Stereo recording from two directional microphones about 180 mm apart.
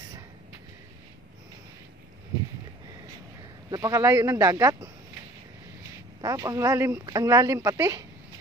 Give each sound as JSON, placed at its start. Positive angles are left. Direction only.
{"t": 3.7, "sound": "speech", "side_deg": -15}
{"t": 6.2, "sound": "speech", "side_deg": -15}